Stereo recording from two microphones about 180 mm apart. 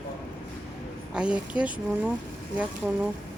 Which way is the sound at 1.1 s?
5° right (ahead or behind).